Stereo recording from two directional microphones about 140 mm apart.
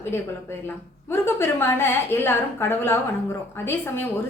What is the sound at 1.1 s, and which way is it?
A woman's voice, 15° left (ahead or behind).